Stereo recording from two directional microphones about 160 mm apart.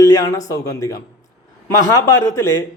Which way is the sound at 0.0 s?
20° left (ahead or behind).